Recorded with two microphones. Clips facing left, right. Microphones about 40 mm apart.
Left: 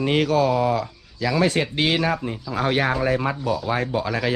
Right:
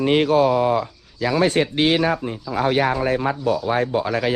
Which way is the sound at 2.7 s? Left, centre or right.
Left.